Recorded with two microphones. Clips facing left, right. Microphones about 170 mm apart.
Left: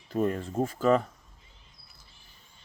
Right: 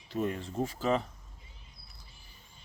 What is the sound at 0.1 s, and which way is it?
Speech, 45° left (ahead or behind).